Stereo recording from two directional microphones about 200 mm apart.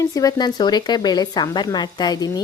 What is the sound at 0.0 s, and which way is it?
Speech, 15° left (ahead or behind).